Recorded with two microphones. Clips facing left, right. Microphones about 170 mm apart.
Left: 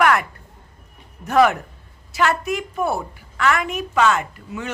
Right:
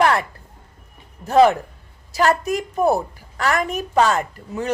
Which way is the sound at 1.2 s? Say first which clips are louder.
Right 2 dB; 30° right (ahead or behind).